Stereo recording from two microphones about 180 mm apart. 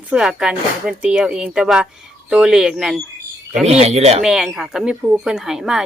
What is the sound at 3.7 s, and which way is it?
Speech, 35° right (ahead or behind).